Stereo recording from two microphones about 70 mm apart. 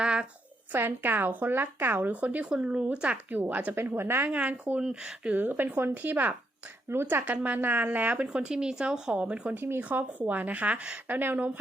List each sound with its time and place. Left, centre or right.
0.0 s a sound: centre
0.7 s speech: right
4.3 s speech: centre
4.8 s speech: centre
5.3 s speech: right
9.6 s speech: right